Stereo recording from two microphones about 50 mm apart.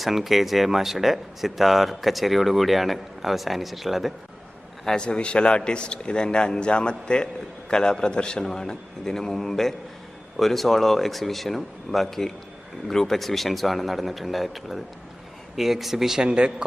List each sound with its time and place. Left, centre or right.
0.0 s speech: centre
4.9 s a man's voice: centre
16.2 s speech: centre